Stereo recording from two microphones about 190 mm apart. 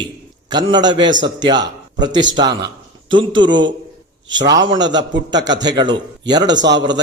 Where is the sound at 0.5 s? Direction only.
20° right (ahead or behind).